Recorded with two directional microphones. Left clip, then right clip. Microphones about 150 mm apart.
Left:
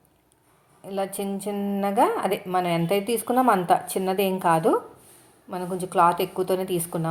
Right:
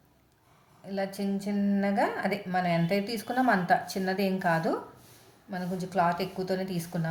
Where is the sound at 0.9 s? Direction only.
20° left (ahead or behind).